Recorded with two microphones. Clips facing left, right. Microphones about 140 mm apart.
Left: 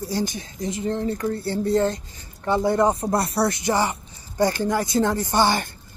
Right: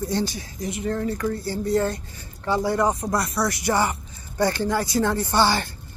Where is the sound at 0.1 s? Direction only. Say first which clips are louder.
Even; 20° left (ahead or behind).